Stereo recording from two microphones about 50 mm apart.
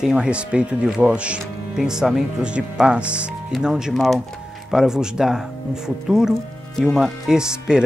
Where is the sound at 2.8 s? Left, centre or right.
Right.